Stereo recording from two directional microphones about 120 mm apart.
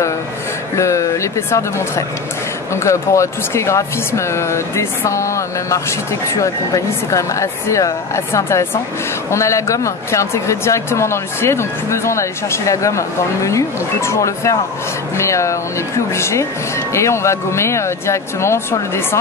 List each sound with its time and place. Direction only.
0.7 s speech: 25° left (ahead or behind)